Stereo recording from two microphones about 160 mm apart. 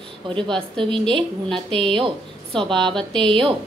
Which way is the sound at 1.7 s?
35° right (ahead or behind).